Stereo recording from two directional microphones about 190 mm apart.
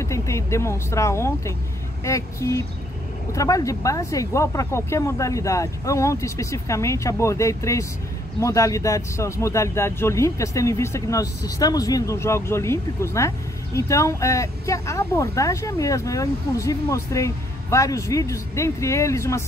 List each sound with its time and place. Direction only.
0.0 s speech: 15° left (ahead or behind)